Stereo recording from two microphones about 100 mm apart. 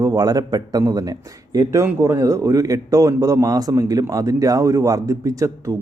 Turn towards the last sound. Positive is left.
turn(degrees=-35)  # may be behind; listen again after turning